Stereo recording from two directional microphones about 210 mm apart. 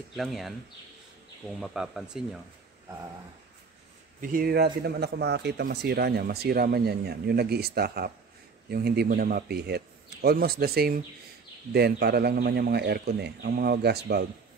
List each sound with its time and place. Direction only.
0.1 s speech: centre (ahead or behind)
1.6 s speech: centre (ahead or behind)
4.2 s speech: 40° right (ahead or behind)